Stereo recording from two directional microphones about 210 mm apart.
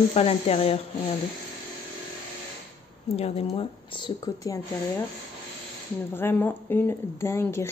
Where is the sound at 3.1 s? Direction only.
30° left (ahead or behind).